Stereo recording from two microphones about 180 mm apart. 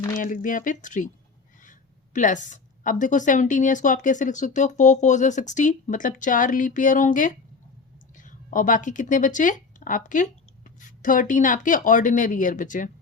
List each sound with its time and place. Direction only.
0.2 s a woman's voice: 50° left (ahead or behind)
2.1 s a woman's voice: 45° left (ahead or behind)